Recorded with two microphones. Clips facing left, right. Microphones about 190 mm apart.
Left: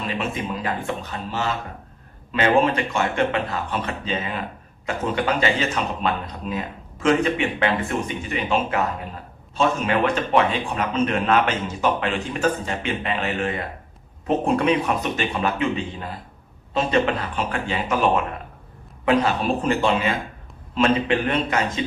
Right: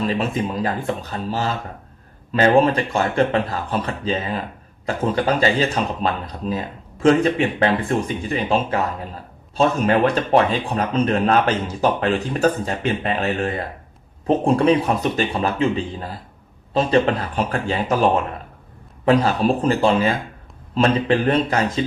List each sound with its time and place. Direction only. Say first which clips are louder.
0.1 s speech: right 4 dB; 35° right (ahead or behind)